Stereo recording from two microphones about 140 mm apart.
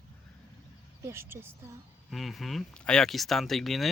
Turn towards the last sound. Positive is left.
turn(degrees=0)  # may be behind; listen again after turning